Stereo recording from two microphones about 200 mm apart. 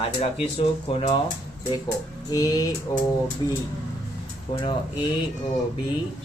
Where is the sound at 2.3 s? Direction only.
20° left (ahead or behind).